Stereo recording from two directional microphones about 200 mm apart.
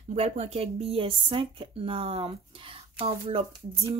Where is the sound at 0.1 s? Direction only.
30° right (ahead or behind).